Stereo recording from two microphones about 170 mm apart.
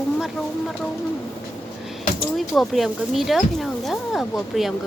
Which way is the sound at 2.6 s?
Centre (ahead or behind).